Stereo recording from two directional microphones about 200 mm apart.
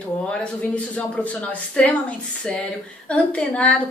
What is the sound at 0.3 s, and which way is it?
A woman's voice, 5° left (ahead or behind).